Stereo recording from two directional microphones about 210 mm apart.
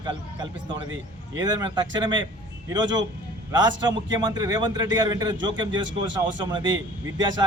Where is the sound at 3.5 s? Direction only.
20° right (ahead or behind).